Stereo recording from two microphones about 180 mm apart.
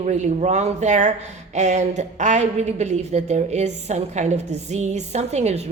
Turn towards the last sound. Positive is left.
turn(degrees=-35)  # may be behind; listen again after turning